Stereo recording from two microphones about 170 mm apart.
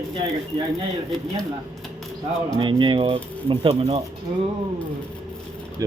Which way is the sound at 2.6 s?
30° right (ahead or behind).